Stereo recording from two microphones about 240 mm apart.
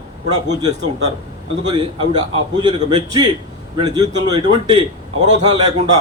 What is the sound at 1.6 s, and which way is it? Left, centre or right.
A man's voice, centre.